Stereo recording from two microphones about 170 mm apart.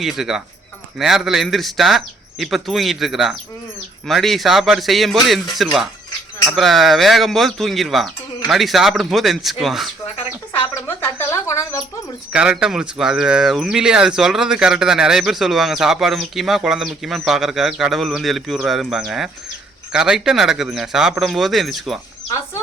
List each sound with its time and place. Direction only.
0.0 s speech: centre (ahead or behind)
10.8 s bird: 15° left (ahead or behind)
12.3 s speech: 5° right (ahead or behind)